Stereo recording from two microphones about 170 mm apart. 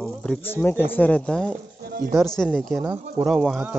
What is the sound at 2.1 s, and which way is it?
Speech, centre (ahead or behind).